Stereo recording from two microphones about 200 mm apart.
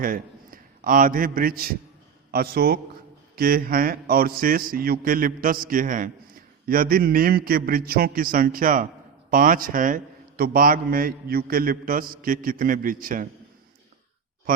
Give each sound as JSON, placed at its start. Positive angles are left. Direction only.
{"t": 0.0, "sound": "a man's voice", "side_deg": -45}